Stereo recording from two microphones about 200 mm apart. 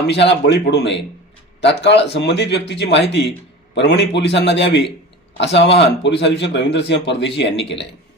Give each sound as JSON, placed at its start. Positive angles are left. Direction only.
{"t": 0.1, "sound": "speech", "side_deg": 60}